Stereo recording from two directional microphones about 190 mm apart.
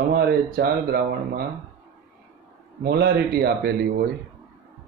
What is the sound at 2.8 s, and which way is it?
Speech, 55° right (ahead or behind).